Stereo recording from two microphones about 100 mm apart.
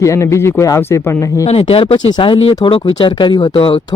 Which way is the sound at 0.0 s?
30° left (ahead or behind).